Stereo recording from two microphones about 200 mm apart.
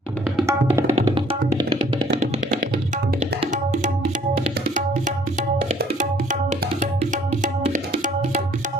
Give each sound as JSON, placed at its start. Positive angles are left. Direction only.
{"t": 0.4, "sound": "tabla", "side_deg": -15}
{"t": 0.9, "sound": "music", "side_deg": -30}
{"t": 3.5, "sound": "tabla", "side_deg": -40}
{"t": 7.6, "sound": "music", "side_deg": -40}